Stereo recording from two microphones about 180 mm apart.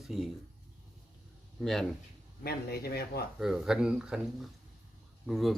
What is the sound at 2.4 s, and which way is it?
Speech, 60° left (ahead or behind).